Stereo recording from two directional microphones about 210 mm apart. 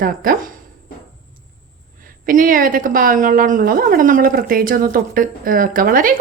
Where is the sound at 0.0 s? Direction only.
45° right (ahead or behind).